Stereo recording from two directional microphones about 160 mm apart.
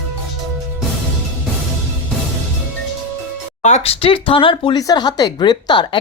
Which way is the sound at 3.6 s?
45° left (ahead or behind).